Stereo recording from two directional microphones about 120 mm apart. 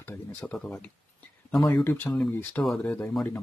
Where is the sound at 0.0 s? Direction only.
15° left (ahead or behind).